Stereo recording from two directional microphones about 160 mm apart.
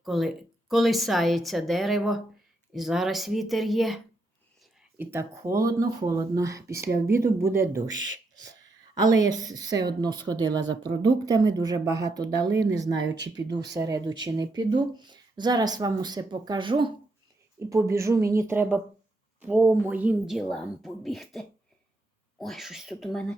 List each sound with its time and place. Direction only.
0.0 s a woman's voice: centre (ahead or behind)
4.9 s speech: 20° right (ahead or behind)
12.9 s speech: 90° right
13.3 s speech: 25° right (ahead or behind)
17.6 s a woman's voice: 20° right (ahead or behind); by 23.4 s 5° left (ahead or behind)